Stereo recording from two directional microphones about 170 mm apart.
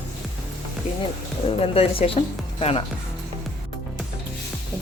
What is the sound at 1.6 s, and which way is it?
Speech, 35° left (ahead or behind).